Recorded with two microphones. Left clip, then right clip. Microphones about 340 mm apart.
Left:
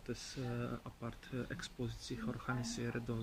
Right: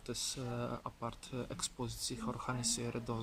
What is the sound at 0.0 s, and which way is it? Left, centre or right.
Speech, centre.